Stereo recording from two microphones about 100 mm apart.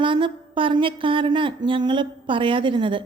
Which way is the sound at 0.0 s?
55° right (ahead or behind).